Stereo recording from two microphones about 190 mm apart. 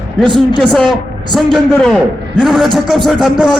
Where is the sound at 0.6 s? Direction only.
5° left (ahead or behind).